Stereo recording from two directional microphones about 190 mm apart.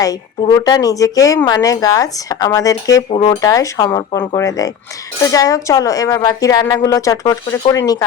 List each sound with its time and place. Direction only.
0.0 s a woman's voice: 20° left (ahead or behind)